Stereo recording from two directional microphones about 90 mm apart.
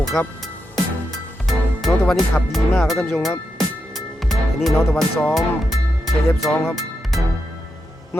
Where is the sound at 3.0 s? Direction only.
25° left (ahead or behind).